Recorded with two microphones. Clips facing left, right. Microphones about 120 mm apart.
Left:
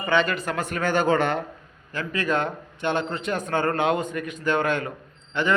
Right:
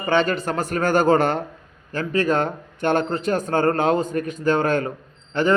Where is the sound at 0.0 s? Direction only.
35° right (ahead or behind).